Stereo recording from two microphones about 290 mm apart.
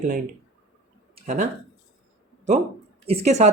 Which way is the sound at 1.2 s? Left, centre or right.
Right.